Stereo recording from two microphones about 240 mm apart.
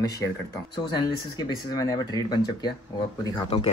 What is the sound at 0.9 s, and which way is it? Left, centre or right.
Speech, centre.